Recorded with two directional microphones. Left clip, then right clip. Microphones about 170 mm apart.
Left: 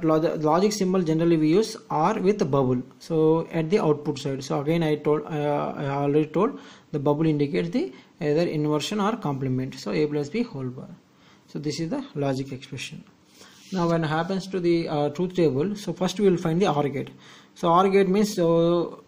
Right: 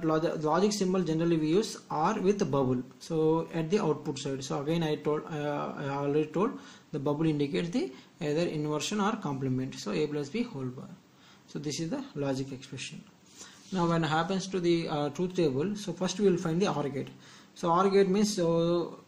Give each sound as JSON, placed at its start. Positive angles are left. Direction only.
{"t": 0.0, "sound": "speech", "side_deg": 40}
{"t": 13.7, "sound": "speech", "side_deg": 30}